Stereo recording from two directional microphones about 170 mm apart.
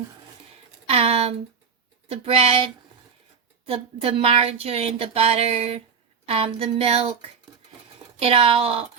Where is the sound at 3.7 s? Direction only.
35° right (ahead or behind).